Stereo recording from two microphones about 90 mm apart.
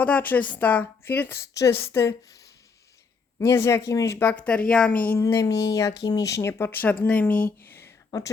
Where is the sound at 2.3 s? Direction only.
40° left (ahead or behind).